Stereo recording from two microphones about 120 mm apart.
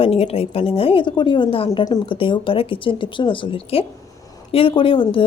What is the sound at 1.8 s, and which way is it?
Speech, 35° left (ahead or behind).